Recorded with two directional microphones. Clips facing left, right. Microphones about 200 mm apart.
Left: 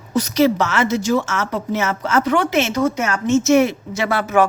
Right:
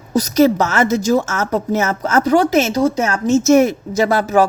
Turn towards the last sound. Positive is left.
turn(degrees=-40)  # may be behind; listen again after turning